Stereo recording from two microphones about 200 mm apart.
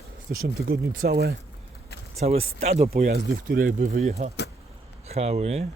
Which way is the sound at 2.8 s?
50° right (ahead or behind).